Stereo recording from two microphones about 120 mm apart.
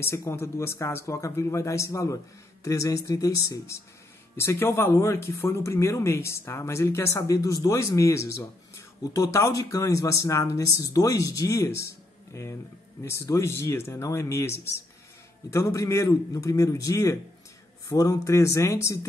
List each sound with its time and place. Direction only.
0.3 s speech: 20° left (ahead or behind)